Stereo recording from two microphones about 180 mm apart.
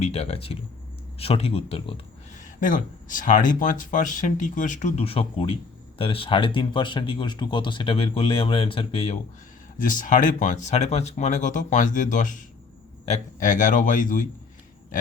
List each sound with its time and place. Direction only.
0.0 s speech: 35° left (ahead or behind)
2.4 s speech: 45° left (ahead or behind)
9.7 s speech: 45° left (ahead or behind)